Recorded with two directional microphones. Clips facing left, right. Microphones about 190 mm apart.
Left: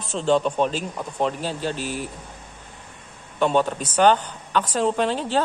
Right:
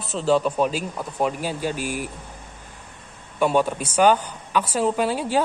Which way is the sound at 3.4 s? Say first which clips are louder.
Even; 10° right (ahead or behind).